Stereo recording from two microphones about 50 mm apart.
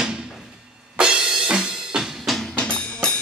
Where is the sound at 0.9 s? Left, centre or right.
Centre.